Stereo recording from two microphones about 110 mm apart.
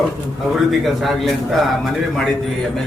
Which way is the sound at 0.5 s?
Centre (ahead or behind).